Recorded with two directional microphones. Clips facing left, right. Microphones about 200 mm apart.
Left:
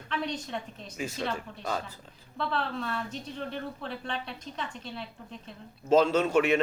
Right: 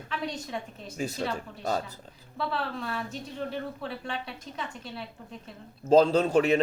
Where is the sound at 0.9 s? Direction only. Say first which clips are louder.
Right 3 dB; 40° right (ahead or behind).